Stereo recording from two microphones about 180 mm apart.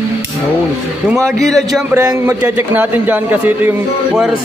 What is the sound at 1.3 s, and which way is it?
Speech, centre (ahead or behind).